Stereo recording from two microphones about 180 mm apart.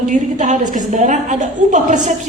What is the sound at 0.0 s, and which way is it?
A woman's voice, 45° right (ahead or behind).